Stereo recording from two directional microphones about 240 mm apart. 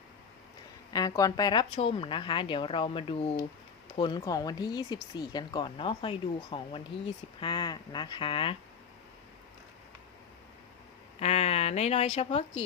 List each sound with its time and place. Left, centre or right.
0.9 s speech: centre
11.2 s a woman's voice: left